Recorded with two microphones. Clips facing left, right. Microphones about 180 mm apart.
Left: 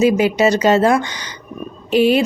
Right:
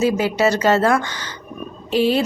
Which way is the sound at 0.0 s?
15° left (ahead or behind).